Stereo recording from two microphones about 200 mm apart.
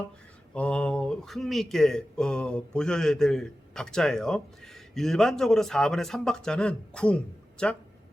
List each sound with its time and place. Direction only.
0.5 s speech: 5° left (ahead or behind)